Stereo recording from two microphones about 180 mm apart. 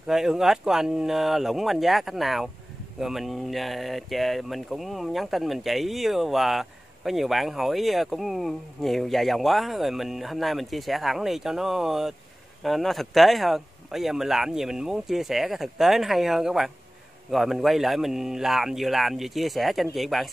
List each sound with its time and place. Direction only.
0.0 s speech: 5° right (ahead or behind)